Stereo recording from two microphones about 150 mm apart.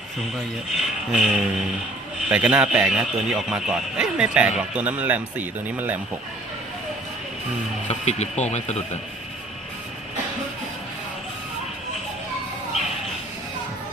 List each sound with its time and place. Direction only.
0.2 s speech: centre (ahead or behind)
7.9 s speech: 45° left (ahead or behind)